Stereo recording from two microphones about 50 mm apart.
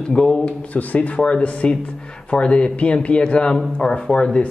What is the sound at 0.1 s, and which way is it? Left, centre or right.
Speech, centre.